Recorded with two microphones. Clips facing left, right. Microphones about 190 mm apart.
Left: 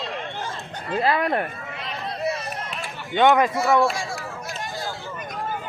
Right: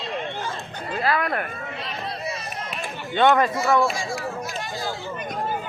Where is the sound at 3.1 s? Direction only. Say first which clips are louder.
Left 1 dB; 15° left (ahead or behind).